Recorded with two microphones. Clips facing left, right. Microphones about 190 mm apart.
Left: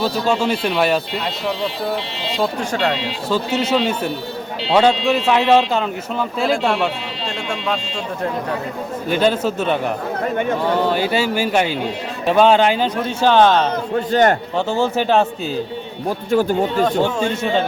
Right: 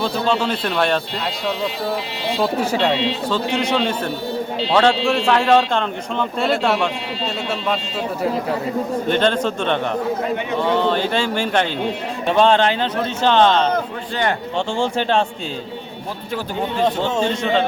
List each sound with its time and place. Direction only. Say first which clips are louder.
0.0 s speech: left 1 dB; 10° left (ahead or behind)
2.4 s speech: right 1 dB; 5° right (ahead or behind)
3.2 s speech: left 6 dB; 5° left (ahead or behind)
9.0 s speech: left 3 dB; 5° left (ahead or behind)
10.8 s speech: left 1 dB; 10° left (ahead or behind)
14.1 s a man's voice: left 7 dB; 45° left (ahead or behind)
14.5 s speech: left 2 dB; 5° left (ahead or behind)